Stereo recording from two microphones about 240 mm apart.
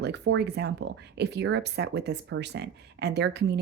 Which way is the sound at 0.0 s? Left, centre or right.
Right.